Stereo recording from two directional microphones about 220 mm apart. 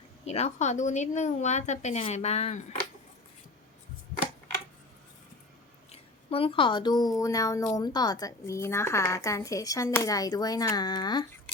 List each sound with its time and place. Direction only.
0.3 s speech: 30° left (ahead or behind)
5.9 s a woman's voice: 25° left (ahead or behind)